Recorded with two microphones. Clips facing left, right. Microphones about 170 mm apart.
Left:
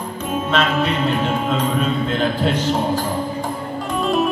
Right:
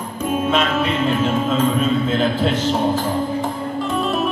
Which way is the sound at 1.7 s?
Centre (ahead or behind).